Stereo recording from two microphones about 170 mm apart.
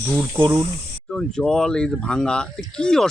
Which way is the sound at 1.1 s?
5° left (ahead or behind).